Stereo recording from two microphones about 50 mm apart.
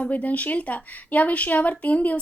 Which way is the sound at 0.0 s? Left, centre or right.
Left.